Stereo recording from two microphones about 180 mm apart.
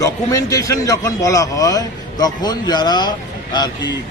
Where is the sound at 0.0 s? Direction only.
20° left (ahead or behind).